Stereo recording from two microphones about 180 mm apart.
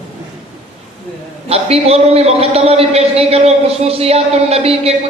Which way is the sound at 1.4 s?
35° right (ahead or behind).